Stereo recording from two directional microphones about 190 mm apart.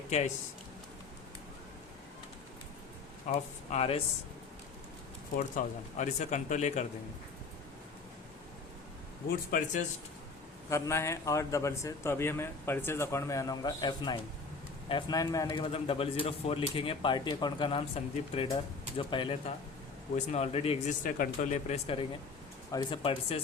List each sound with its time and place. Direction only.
3.2 s speech: 35° left (ahead or behind)
5.4 s speech: 40° left (ahead or behind)
9.3 s speech: 45° left (ahead or behind)
10.7 s a man's voice: 15° left (ahead or behind); by 20.9 s 30° left (ahead or behind)
21.0 s a man's voice: 45° left (ahead or behind); by 23.4 s 30° left (ahead or behind)